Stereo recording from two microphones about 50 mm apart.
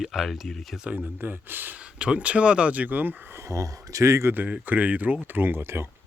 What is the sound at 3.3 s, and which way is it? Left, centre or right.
Speech, right.